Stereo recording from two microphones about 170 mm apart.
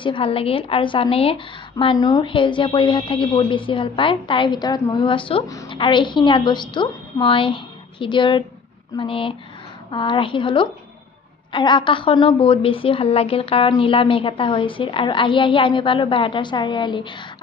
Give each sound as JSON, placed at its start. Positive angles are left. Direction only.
{"t": 0.0, "sound": "a woman's voice", "side_deg": 30}